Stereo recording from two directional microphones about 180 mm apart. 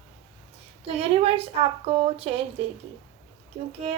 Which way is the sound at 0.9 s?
35° right (ahead or behind).